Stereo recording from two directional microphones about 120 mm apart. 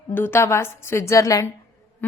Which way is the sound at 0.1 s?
20° left (ahead or behind).